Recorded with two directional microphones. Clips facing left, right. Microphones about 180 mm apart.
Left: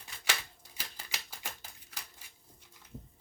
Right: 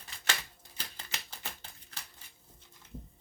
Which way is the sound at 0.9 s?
10° left (ahead or behind).